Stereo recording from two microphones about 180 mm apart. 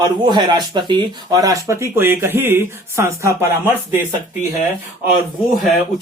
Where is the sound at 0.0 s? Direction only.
25° right (ahead or behind).